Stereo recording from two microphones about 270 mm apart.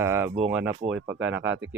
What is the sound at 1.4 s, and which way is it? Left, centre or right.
Speech, right.